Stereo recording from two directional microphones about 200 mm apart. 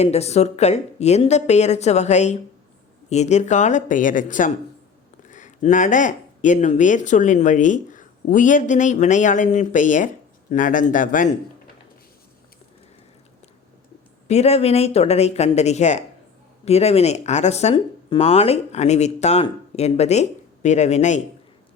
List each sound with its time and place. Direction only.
0.0 s speech: 30° left (ahead or behind)
14.3 s speech: 35° left (ahead or behind)